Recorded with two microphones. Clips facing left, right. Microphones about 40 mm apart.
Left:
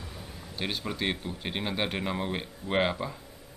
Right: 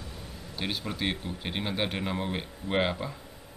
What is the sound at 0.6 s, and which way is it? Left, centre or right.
Speech, centre.